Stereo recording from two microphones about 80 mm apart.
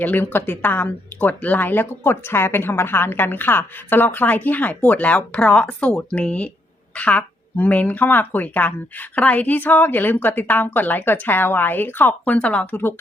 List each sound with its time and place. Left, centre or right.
0.0 s speech: left